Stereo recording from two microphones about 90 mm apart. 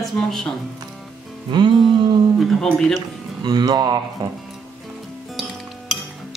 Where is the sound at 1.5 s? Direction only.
60° right (ahead or behind).